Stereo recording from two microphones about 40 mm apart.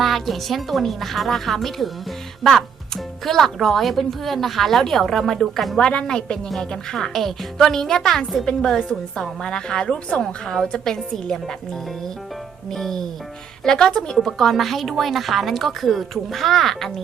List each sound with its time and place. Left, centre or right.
0.0 s a woman's voice: centre
6.1 s a woman's voice: centre
12.7 s a woman's voice: centre